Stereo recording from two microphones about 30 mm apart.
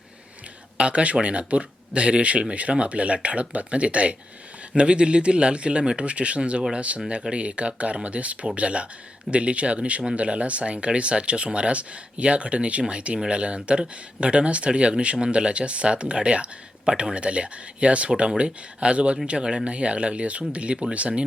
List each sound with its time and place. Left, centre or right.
0.8 s speech: right